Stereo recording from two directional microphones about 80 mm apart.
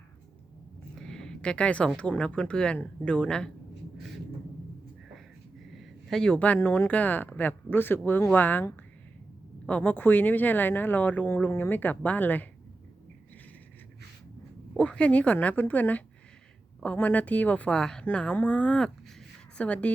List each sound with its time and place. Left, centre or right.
0.9 s a sound: centre
2.0 s a woman's voice: centre
5.7 s speech: centre; by 8.6 s left
9.6 s speech: centre
14.8 s a woman's voice: centre